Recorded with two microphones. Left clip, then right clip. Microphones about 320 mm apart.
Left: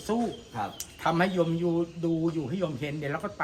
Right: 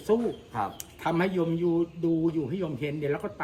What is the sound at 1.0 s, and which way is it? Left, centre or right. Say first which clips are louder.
Speech: left 2 dB; centre.